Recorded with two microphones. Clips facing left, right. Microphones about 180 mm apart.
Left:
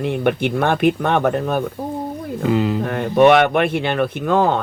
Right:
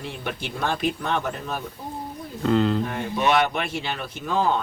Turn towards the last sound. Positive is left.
turn(degrees=60)  # may be behind; listen again after turning